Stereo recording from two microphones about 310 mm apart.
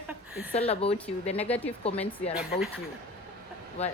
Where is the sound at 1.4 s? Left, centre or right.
Centre.